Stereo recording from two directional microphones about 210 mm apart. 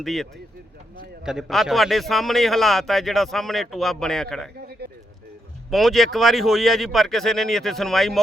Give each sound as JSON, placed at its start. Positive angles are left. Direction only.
{"t": 0.0, "sound": "a man's voice", "side_deg": 0}
{"t": 4.6, "sound": "a sound", "side_deg": -50}
{"t": 5.7, "sound": "a man's voice", "side_deg": 0}